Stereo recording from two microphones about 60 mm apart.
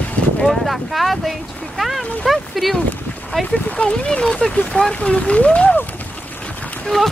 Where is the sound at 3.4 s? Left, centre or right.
Centre.